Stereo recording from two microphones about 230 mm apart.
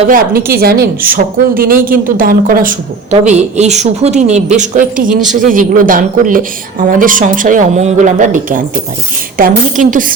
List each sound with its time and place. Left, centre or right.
0.1 s a woman's voice: right